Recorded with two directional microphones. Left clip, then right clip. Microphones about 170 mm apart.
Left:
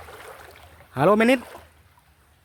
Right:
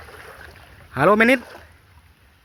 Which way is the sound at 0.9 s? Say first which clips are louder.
Right 3 dB; 15° left (ahead or behind).